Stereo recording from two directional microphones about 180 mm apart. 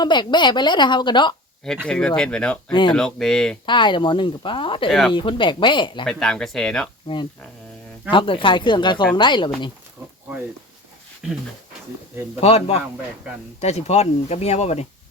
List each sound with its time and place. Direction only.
0.0 s speech: 25° left (ahead or behind)
1.9 s speech: 5° left (ahead or behind)
3.7 s speech: 25° left (ahead or behind)
4.9 s speech: centre (ahead or behind)
5.1 s speech: 25° left (ahead or behind)
6.1 s speech: centre (ahead or behind)
7.1 s speech: 25° left (ahead or behind)
12.4 s speech: 35° left (ahead or behind)